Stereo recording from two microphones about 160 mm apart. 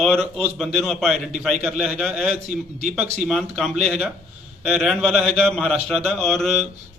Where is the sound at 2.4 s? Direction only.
45° right (ahead or behind).